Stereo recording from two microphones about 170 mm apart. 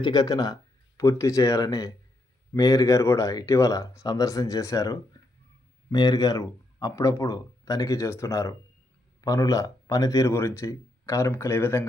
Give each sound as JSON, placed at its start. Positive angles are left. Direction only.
{"t": 0.0, "sound": "speech", "side_deg": 25}